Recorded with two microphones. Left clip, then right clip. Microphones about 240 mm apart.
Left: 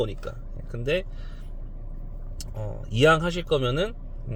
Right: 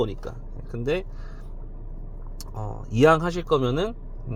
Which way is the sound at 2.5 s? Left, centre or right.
Centre.